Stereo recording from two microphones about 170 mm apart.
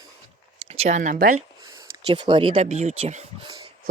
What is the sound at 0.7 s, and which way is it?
Speech, 40° right (ahead or behind).